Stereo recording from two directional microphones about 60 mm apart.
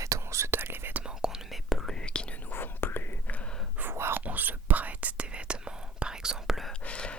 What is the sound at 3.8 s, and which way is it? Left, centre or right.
Whispering, right.